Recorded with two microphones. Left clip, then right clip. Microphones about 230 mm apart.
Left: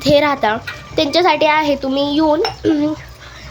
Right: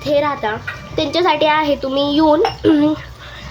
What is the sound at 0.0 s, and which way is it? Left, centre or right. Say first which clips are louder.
A child's voice: left 4 dB; centre.